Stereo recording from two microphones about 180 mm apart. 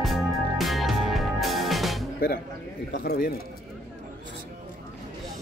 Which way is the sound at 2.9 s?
65° left (ahead or behind).